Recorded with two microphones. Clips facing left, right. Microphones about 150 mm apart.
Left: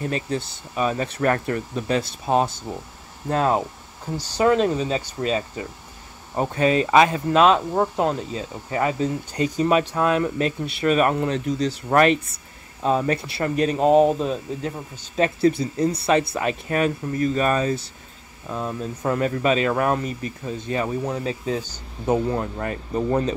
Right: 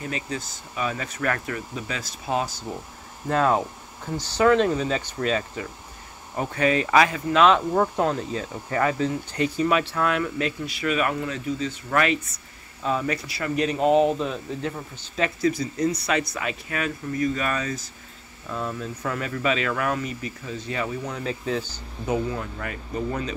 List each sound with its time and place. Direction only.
0.0 s speech: 35° left (ahead or behind)
4.2 s speech: 15° left (ahead or behind)
4.6 s speech: 30° left (ahead or behind)
7.7 s speech: 10° left (ahead or behind)
8.0 s speech: 20° left (ahead or behind); by 23.3 s 40° left (ahead or behind)